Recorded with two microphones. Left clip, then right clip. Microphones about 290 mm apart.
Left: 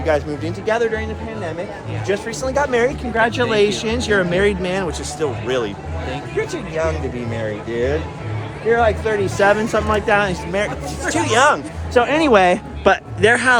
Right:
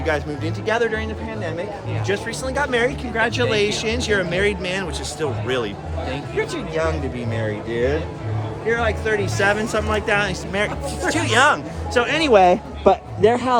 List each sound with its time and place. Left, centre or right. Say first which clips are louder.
0.0 s speech: left 4 dB; centre
2.0 s speech: left 3 dB; centre
3.2 s speech: left 3 dB; left
4.8 s speech: left 3 dB; centre
8.7 s speech: left 5 dB; centre
11.1 s speech: left 2 dB; centre
11.9 s speech: left 4 dB; centre
12.3 s speech: even; left